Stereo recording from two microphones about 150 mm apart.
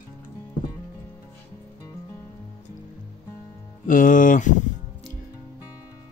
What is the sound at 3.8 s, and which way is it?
Speech, 65° left (ahead or behind).